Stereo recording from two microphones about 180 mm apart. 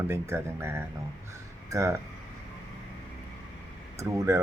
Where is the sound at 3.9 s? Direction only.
15° right (ahead or behind).